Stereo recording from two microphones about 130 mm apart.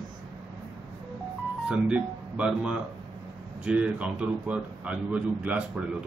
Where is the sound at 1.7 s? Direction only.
10° right (ahead or behind).